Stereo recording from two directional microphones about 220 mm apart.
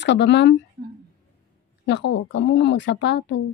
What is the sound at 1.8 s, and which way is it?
Speech, 50° left (ahead or behind).